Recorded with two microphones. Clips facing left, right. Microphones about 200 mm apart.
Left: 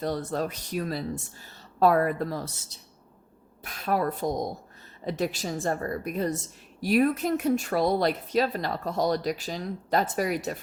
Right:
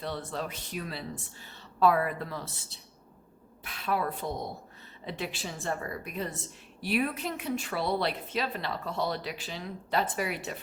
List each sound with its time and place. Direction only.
0.0 s a woman's voice: 40° left (ahead or behind)